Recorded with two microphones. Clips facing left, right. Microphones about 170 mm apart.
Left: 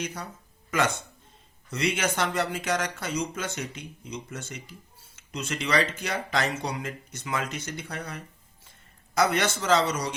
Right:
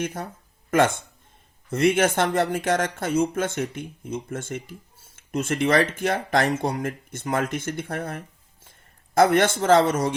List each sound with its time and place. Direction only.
0.0 s speech: 50° right (ahead or behind)